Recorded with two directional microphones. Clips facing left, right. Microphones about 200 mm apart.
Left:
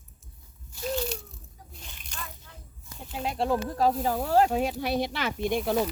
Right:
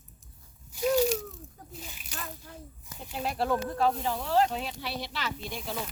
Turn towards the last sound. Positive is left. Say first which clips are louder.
# left 9 dB
turn(degrees=60)  # may be behind; listen again after turning